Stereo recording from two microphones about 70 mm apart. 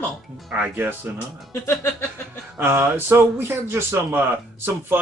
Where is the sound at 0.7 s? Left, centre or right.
Right.